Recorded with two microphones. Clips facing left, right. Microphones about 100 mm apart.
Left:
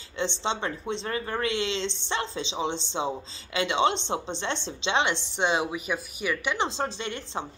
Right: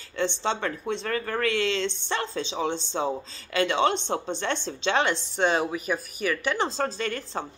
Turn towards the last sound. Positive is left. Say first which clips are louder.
# right 3 dB
turn(degrees=20)  # may be behind; listen again after turning